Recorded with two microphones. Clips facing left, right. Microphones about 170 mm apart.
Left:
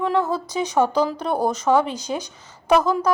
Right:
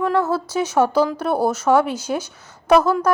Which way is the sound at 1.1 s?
5° right (ahead or behind).